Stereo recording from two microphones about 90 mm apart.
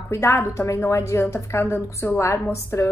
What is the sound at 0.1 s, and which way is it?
A woman's voice, 30° left (ahead or behind).